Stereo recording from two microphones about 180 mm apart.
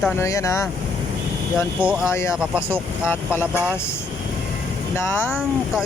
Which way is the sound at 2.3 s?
5° right (ahead or behind).